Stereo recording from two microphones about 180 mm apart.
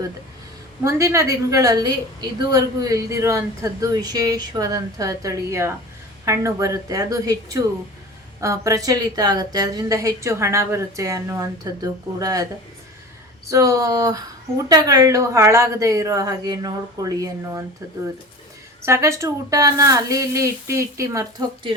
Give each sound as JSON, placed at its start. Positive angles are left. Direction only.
{"t": 0.9, "sound": "a woman's voice", "side_deg": -15}
{"t": 13.5, "sound": "a woman's voice", "side_deg": -20}
{"t": 18.8, "sound": "speech", "side_deg": -15}